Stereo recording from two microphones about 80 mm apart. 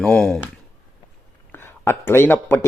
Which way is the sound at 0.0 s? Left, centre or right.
Centre.